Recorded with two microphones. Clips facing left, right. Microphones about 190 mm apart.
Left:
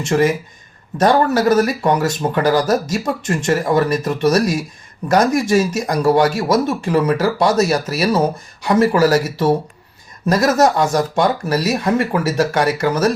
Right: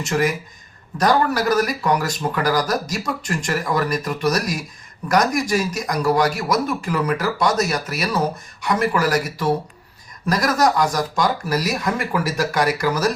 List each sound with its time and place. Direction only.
0.0 s speech: 25° left (ahead or behind)